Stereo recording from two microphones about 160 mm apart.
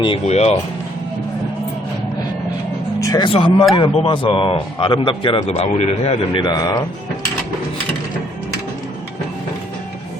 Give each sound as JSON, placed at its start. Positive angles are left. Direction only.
{"t": 0.3, "sound": "speech", "side_deg": 45}
{"t": 3.0, "sound": "speech", "side_deg": 25}
{"t": 6.4, "sound": "speech", "side_deg": 25}